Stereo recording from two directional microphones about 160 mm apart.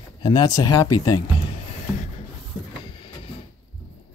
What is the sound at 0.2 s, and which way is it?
Speech, 25° left (ahead or behind).